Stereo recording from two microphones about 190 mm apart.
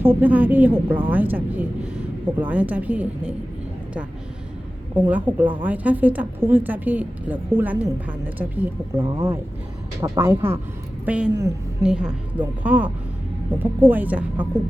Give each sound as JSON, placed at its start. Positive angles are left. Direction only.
{"t": 0.0, "sound": "a woman's voice", "side_deg": -10}
{"t": 4.9, "sound": "a woman's voice", "side_deg": -10}
{"t": 9.0, "sound": "speech", "side_deg": -30}
{"t": 10.0, "sound": "a woman's voice", "side_deg": -15}